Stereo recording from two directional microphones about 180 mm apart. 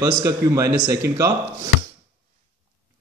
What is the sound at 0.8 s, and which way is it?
Speech, 60° right (ahead or behind).